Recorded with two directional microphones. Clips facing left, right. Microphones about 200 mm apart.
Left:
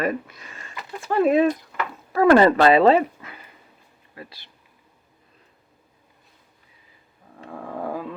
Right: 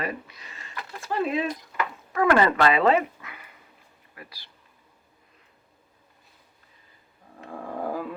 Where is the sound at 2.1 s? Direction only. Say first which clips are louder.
Left 6 dB; 35° left (ahead or behind).